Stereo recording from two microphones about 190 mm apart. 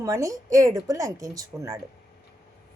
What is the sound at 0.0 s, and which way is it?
Speech, 15° right (ahead or behind).